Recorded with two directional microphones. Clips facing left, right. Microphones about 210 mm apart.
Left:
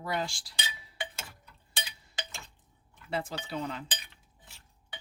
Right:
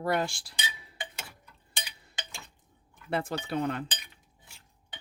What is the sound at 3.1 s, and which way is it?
Cutlery, 55° right (ahead or behind).